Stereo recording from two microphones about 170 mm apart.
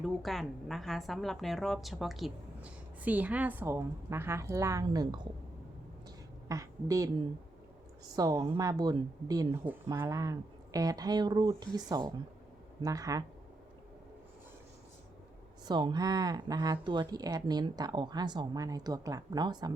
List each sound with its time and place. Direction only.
0.0 s a woman's voice: centre (ahead or behind); by 5.3 s 25° right (ahead or behind)
6.5 s a woman's voice: 20° right (ahead or behind)
15.6 s a woman's voice: 25° right (ahead or behind)